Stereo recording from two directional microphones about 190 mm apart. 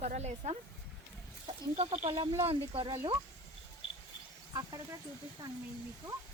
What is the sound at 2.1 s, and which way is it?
Speech, 20° right (ahead or behind).